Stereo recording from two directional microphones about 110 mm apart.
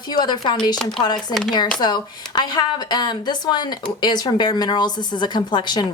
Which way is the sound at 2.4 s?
40° left (ahead or behind).